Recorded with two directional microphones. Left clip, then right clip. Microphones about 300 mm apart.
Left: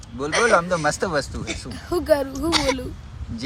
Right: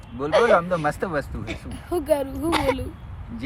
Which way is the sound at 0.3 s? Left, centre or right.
Centre.